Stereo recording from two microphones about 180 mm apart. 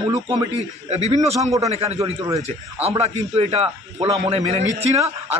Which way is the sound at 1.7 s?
35° right (ahead or behind).